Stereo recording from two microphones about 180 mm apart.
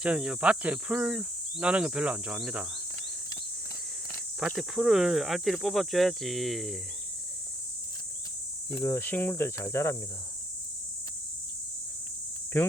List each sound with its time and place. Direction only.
0.0 s cricket: 5° right (ahead or behind)
4.4 s cricket: 5° right (ahead or behind)
8.7 s cricket: 15° left (ahead or behind)
12.5 s cricket: 10° left (ahead or behind)